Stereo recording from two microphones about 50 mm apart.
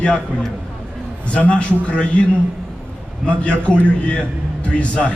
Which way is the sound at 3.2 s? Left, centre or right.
Left.